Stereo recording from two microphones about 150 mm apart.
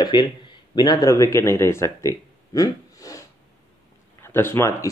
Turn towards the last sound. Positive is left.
turn(degrees=15)  # may be behind; listen again after turning